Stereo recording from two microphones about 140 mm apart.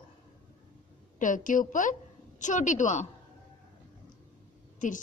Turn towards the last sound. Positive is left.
turn(degrees=65)  # may be behind; listen again after turning